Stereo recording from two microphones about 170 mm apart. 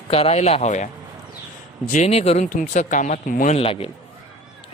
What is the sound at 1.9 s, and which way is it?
A man's voice, 40° left (ahead or behind).